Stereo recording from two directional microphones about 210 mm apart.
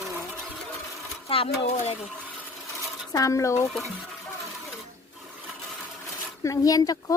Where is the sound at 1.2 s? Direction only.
25° left (ahead or behind).